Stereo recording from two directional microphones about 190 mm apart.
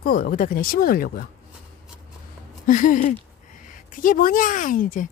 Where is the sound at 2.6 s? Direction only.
45° left (ahead or behind).